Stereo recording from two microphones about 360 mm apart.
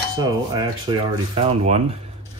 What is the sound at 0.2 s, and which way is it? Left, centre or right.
Speech, centre.